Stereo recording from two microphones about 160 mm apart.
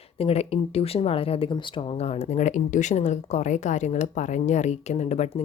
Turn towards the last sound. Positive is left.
turn(degrees=45)  # may be behind; listen again after turning